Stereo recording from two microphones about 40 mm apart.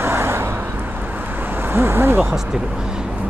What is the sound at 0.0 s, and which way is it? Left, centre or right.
Vehicle, right.